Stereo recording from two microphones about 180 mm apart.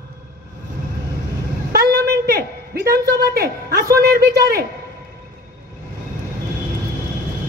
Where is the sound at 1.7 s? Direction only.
60° right (ahead or behind).